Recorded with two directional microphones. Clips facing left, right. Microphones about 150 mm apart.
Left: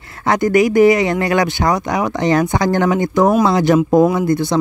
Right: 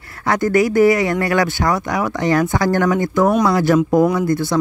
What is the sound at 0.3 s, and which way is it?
Speech, 20° left (ahead or behind).